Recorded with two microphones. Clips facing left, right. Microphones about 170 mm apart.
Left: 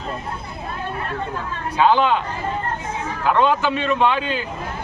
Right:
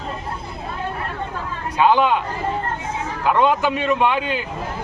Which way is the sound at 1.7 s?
10° right (ahead or behind).